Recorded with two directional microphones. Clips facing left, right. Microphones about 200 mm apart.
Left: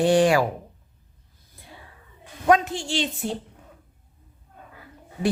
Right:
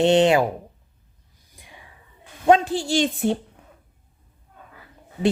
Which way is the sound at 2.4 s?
30° right (ahead or behind).